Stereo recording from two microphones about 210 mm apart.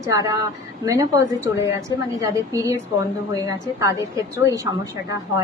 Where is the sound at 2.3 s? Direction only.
15° right (ahead or behind).